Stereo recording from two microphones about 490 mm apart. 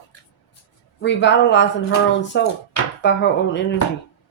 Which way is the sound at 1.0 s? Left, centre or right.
Left.